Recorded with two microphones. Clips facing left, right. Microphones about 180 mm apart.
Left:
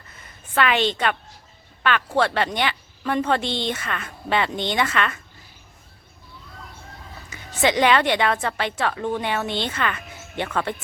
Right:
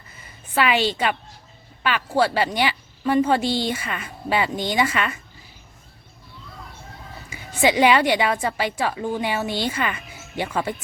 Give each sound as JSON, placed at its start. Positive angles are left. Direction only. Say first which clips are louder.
{"t": 0.2, "sound": "a sound", "louder": "even", "side_deg": -5}
{"t": 1.8, "sound": "a woman's voice", "louder": "even", "side_deg": -5}
{"t": 7.3, "sound": "a woman's voice", "louder": "right 1 dB", "side_deg": -10}